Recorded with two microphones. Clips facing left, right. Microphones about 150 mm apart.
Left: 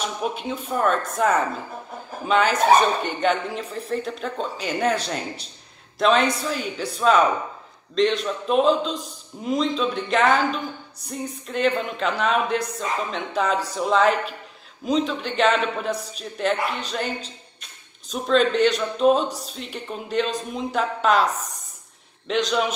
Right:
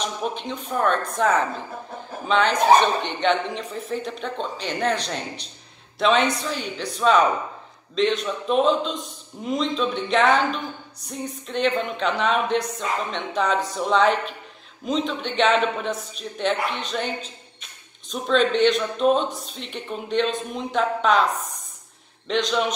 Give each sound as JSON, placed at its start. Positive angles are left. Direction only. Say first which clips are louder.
{"t": 0.0, "sound": "a woman's voice", "louder": "left 1 dB", "side_deg": 5}
{"t": 22.3, "sound": "a woman's voice", "louder": "even", "side_deg": 0}